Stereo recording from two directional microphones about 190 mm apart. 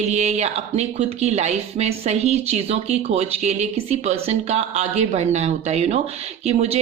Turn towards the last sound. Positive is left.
turn(degrees=-35)  # may be behind; listen again after turning